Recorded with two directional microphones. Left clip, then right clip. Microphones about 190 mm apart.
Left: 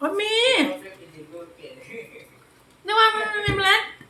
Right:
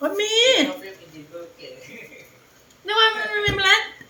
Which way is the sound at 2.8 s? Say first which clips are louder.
Even; 5° left (ahead or behind).